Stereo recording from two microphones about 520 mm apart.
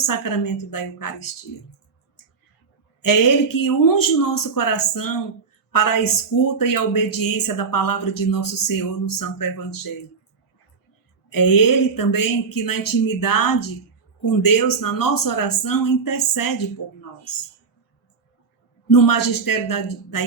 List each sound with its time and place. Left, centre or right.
0.0 s speech: left
3.0 s speech: left
11.3 s speech: left
18.9 s speech: left